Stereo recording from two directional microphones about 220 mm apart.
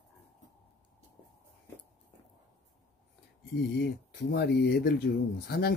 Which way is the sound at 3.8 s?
50° left (ahead or behind).